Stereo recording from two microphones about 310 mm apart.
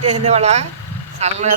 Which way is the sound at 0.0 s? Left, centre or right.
Centre.